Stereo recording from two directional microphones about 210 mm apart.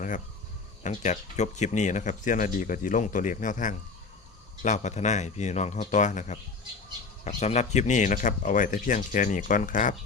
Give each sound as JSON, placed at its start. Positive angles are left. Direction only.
{"t": 0.8, "sound": "speech", "side_deg": 35}